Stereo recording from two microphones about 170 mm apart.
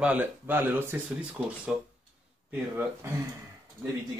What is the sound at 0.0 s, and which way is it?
A man's voice, 10° right (ahead or behind).